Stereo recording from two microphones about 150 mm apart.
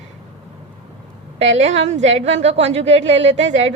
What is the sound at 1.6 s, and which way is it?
A woman's voice, 50° right (ahead or behind).